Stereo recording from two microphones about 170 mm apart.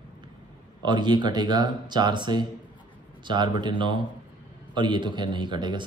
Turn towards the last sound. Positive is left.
turn(degrees=-25)  # may be behind; listen again after turning